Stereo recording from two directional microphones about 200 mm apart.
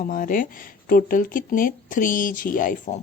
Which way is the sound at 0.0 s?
45° left (ahead or behind).